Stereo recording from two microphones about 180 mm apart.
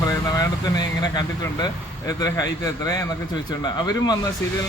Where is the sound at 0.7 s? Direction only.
20° left (ahead or behind).